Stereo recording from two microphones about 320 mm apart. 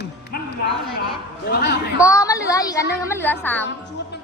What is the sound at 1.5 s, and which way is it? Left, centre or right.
Speech, left.